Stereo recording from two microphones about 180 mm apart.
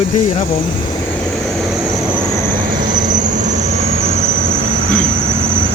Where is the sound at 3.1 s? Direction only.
45° right (ahead or behind).